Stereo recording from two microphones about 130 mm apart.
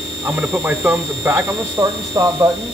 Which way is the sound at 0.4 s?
15° right (ahead or behind).